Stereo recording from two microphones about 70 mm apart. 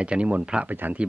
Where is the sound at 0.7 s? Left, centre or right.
Right.